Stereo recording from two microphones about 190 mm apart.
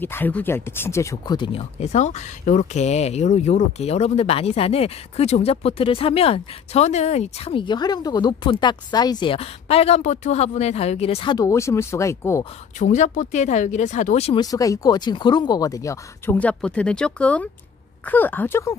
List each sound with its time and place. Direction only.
0.0 s speech: 10° left (ahead or behind); by 11.3 s 30° left (ahead or behind)
11.3 s speech: 15° left (ahead or behind)
12.7 s speech: 40° left (ahead or behind)
14.4 s speech: 20° left (ahead or behind)